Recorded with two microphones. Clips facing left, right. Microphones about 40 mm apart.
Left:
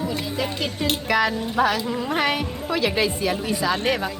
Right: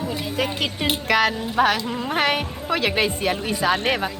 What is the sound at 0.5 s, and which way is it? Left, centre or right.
Speech, right.